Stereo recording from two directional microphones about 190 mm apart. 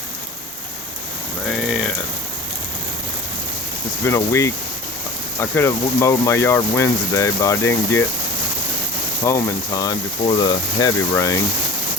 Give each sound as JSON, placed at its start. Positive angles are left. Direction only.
{"t": 1.5, "sound": "mechanisms", "side_deg": 0}
{"t": 4.0, "sound": "speech", "side_deg": 15}
{"t": 9.2, "sound": "speech", "side_deg": 15}